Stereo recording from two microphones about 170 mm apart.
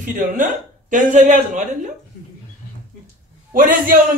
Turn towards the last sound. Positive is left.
turn(degrees=-55)  # may be behind; listen again after turning